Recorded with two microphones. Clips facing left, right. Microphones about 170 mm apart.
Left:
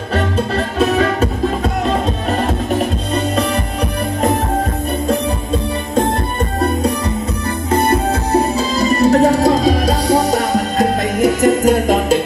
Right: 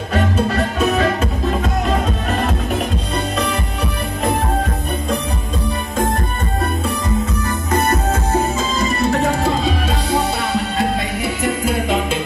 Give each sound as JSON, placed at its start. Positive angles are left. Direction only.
{"t": 0.7, "sound": "music", "side_deg": 35}
{"t": 7.7, "sound": "music", "side_deg": 30}